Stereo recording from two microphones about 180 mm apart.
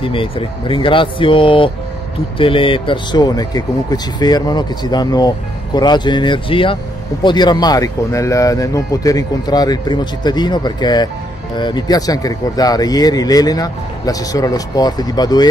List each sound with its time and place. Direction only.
0.0 s speech: 30° left (ahead or behind)